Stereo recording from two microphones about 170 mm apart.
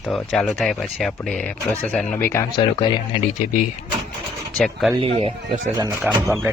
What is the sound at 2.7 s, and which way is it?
Speech, 30° left (ahead or behind).